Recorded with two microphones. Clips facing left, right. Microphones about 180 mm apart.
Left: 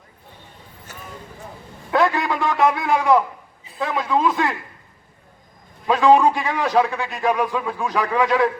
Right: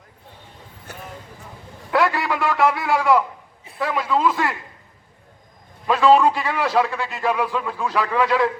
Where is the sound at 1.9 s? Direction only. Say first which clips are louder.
Left 1 dB; 20° left (ahead or behind).